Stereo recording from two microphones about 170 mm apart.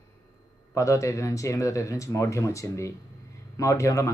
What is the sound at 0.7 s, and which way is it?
A man's voice, 20° left (ahead or behind).